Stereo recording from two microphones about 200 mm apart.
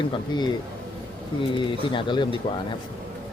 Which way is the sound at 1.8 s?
25° left (ahead or behind).